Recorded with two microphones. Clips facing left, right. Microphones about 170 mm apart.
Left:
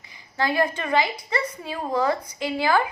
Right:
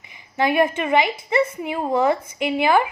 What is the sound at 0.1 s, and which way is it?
A woman's voice, 20° right (ahead or behind).